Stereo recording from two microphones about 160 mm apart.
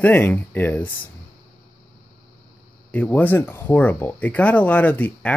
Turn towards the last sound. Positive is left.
turn(degrees=10)  # may be behind; listen again after turning